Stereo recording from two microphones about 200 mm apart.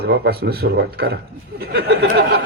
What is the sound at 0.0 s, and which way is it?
A man's voice, 50° right (ahead or behind).